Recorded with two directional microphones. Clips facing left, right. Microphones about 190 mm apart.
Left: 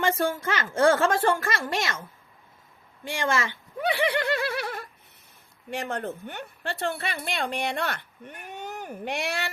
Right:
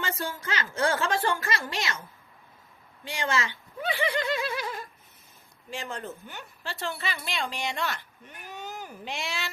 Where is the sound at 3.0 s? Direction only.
50° left (ahead or behind).